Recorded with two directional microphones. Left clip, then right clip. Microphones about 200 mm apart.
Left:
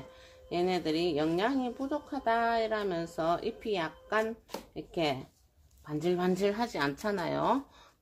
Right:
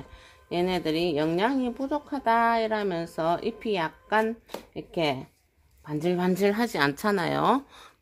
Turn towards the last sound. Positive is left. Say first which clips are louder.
# right 6 dB
turn(degrees=-50)  # may be behind; listen again after turning